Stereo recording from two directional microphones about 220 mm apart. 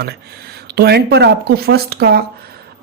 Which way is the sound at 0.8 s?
45° right (ahead or behind).